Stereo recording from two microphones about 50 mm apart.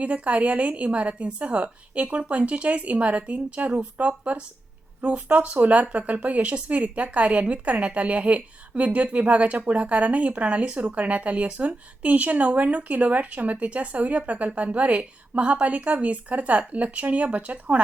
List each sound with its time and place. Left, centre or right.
0.0 s speech: right